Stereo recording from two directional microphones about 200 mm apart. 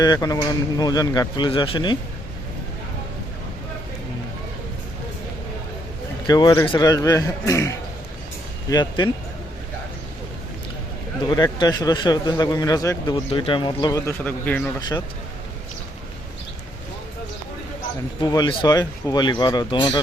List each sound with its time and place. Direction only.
0.0 s speech: 20° left (ahead or behind)
6.2 s speech: 20° left (ahead or behind)
8.7 s speech: 20° left (ahead or behind)
11.3 s speech: 20° left (ahead or behind)
14.8 s speech: 20° left (ahead or behind)
18.2 s speech: 20° left (ahead or behind)